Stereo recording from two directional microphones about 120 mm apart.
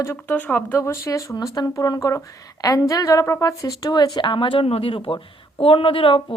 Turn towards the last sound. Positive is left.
turn(degrees=45)  # may be behind; listen again after turning